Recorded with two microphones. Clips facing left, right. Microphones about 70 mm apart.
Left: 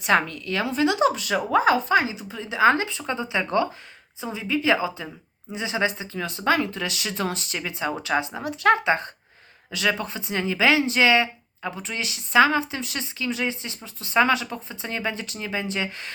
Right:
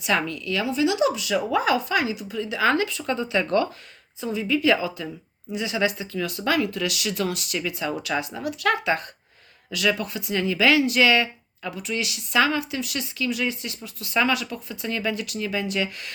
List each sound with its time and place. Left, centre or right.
0.0 s a woman's voice: left